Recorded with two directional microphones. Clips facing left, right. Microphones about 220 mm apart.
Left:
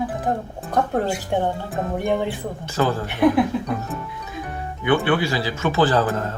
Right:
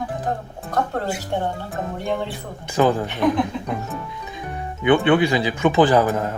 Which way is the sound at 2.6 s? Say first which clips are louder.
Right 4 dB; 15° right (ahead or behind).